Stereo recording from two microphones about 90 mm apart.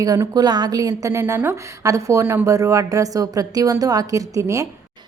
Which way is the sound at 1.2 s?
25° right (ahead or behind).